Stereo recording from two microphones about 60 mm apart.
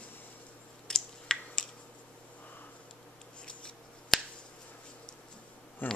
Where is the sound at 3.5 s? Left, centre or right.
Centre.